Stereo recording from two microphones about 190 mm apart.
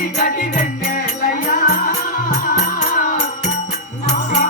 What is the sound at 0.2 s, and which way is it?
Music, 45° left (ahead or behind).